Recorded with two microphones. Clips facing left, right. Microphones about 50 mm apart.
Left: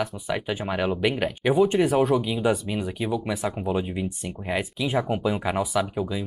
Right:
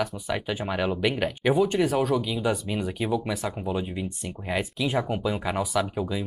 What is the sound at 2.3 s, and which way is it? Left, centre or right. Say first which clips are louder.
Speech: left 3 dB; centre.